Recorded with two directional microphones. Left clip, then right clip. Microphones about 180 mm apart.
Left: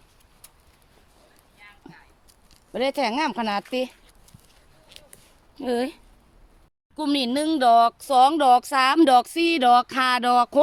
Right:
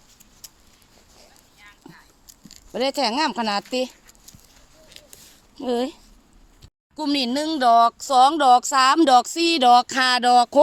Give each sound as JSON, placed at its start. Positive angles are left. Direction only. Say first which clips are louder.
{"t": 1.6, "sound": "a sound", "louder": "even", "side_deg": -60}
{"t": 2.7, "sound": "speech", "louder": "right 2 dB", "side_deg": -20}
{"t": 5.5, "sound": "speech", "louder": "right 1 dB", "side_deg": -15}
{"t": 6.9, "sound": "speech", "louder": "right 1 dB", "side_deg": -5}